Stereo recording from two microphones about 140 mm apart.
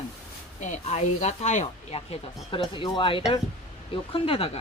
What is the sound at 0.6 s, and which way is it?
Speech, 55° left (ahead or behind).